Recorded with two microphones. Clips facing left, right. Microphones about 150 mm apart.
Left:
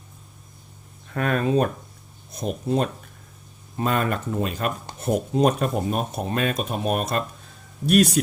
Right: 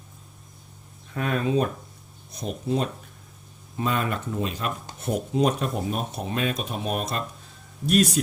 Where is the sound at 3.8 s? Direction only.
50° left (ahead or behind).